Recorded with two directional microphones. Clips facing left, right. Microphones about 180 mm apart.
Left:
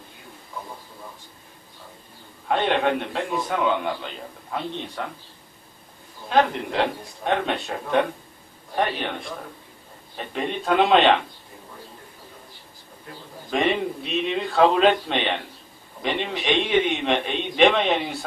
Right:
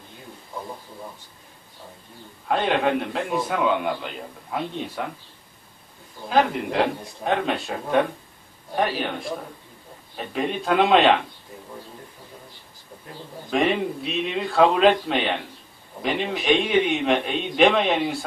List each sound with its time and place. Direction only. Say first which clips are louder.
2.4 s a man's voice: even; centre (ahead or behind)
6.2 s a man's voice: even; 5° right (ahead or behind)
13.5 s a man's voice: right 1 dB; centre (ahead or behind)